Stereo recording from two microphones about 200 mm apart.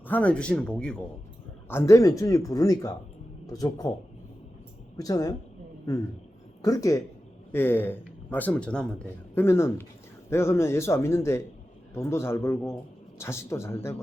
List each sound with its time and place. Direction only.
0.0 s a man's voice: 5° left (ahead or behind)
4.9 s a man's voice: 20° left (ahead or behind)
6.6 s a woman's voice: 15° left (ahead or behind)